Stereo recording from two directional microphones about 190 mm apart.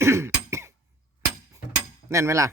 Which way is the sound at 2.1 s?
15° right (ahead or behind).